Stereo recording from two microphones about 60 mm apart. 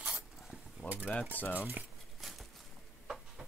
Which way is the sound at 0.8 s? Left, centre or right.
Right.